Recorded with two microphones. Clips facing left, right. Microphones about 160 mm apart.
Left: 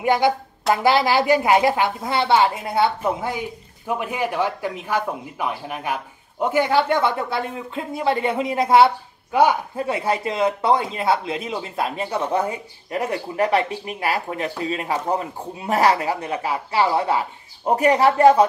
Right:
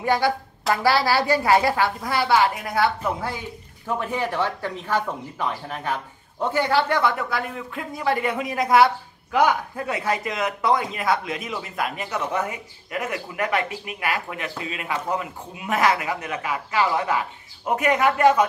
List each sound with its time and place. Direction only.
0.0 s a woman's voice: 20° left (ahead or behind)